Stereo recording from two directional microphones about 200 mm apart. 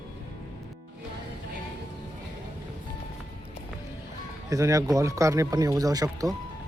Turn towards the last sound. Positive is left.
turn(degrees=-20)  # may be behind; listen again after turning